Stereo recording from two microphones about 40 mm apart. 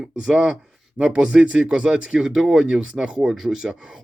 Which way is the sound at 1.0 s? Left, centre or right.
Right.